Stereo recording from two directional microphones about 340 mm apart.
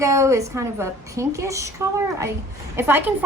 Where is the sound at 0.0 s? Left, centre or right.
Centre.